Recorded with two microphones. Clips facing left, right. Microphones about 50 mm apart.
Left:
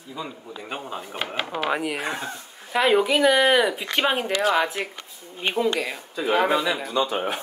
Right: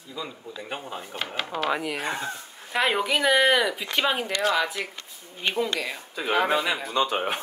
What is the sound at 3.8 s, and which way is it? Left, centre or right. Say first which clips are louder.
Speech: left 2 dB; left.